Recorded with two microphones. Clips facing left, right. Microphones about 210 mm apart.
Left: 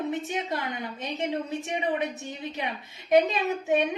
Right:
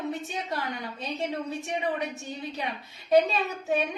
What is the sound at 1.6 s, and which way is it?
A woman's voice, 20° left (ahead or behind).